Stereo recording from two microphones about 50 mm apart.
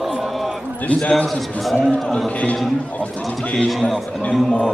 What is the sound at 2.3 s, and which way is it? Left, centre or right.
Speech, left.